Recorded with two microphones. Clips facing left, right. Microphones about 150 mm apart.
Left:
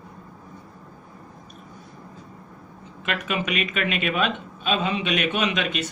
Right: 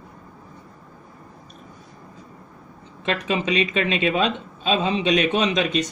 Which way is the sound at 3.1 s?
30° right (ahead or behind).